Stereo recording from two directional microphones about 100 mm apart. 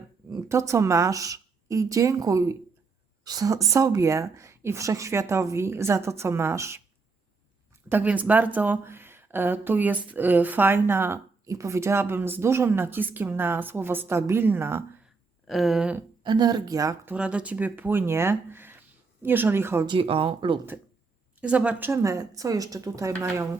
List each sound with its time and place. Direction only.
0.4 s a woman's voice: 30° right (ahead or behind)
7.9 s a woman's voice: 15° right (ahead or behind)
15.4 s speech: centre (ahead or behind)
16.2 s speech: 45° right (ahead or behind)
17.1 s speech: 10° right (ahead or behind)
20.0 s speech: 65° right (ahead or behind)
21.4 s speech: 15° right (ahead or behind); by 23.5 s 30° right (ahead or behind)